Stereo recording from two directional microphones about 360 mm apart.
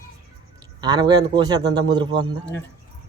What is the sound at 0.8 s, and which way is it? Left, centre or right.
A man's voice, centre.